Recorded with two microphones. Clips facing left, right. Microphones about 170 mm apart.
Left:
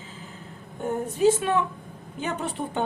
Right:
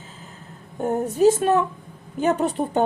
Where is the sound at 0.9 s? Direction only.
40° right (ahead or behind).